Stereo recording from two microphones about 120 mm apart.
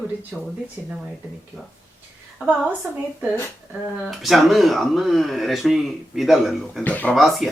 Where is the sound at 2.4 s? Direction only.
15° right (ahead or behind).